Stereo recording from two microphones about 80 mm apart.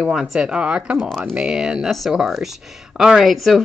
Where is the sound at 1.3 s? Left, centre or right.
Centre.